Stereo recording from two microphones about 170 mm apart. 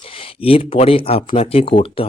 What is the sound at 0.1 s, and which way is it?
Speech, 35° left (ahead or behind).